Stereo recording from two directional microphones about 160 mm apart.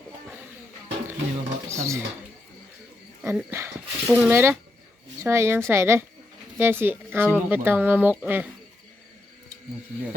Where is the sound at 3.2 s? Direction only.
15° right (ahead or behind).